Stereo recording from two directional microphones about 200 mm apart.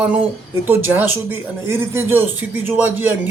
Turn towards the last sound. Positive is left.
turn(degrees=-10)  # may be behind; listen again after turning